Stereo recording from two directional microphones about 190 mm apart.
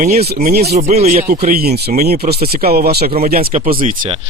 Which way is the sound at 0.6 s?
35° right (ahead or behind).